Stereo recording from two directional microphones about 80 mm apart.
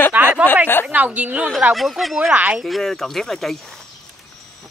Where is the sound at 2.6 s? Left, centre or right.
Centre.